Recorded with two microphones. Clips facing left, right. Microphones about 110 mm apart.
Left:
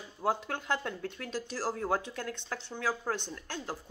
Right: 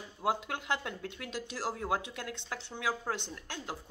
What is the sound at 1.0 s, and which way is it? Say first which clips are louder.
Speech: left 3 dB; 40° left (ahead or behind).